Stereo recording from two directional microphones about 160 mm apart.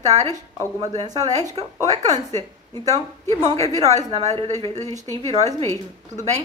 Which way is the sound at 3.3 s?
20° left (ahead or behind).